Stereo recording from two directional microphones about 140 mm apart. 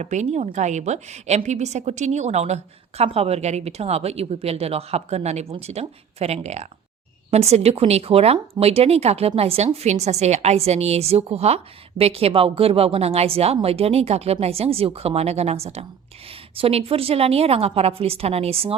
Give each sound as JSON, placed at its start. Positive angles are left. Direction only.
{"t": 0.0, "sound": "a woman's voice", "side_deg": -55}